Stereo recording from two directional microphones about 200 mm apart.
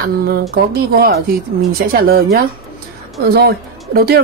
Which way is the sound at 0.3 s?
50° right (ahead or behind).